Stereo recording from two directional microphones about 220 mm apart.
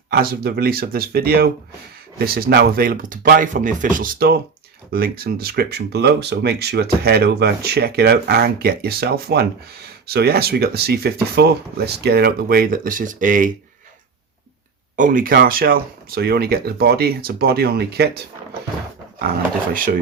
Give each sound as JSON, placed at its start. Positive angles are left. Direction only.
{"t": 0.1, "sound": "speech", "side_deg": -45}
{"t": 14.9, "sound": "speech", "side_deg": -35}
{"t": 19.7, "sound": "speech", "side_deg": -40}